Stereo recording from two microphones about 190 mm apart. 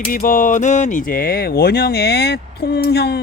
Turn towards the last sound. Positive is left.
turn(degrees=60)  # may be behind; listen again after turning